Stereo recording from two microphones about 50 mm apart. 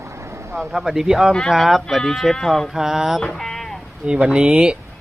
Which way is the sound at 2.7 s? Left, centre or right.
Centre.